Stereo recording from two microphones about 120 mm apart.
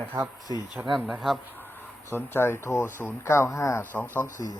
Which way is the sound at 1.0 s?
Centre (ahead or behind).